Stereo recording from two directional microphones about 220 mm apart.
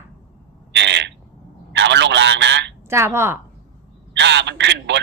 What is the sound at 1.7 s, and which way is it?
A man's voice, 55° right (ahead or behind).